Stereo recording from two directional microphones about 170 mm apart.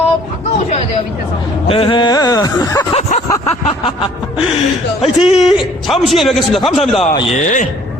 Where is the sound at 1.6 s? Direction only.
35° left (ahead or behind).